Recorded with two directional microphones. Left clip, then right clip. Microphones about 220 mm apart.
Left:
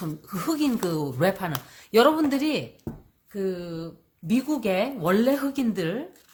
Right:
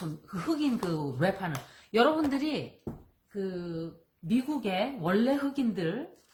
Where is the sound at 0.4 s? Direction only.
45° left (ahead or behind).